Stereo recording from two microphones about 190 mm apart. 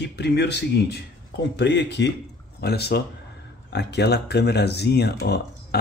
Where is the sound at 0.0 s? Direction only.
60° left (ahead or behind).